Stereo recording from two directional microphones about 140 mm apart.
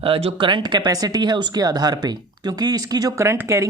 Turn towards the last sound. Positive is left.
turn(degrees=-20)  # may be behind; listen again after turning